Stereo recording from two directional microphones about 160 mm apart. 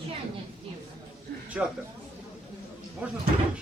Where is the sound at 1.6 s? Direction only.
10° right (ahead or behind).